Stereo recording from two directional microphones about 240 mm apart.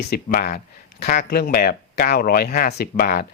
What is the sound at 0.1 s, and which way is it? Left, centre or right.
Speech, left.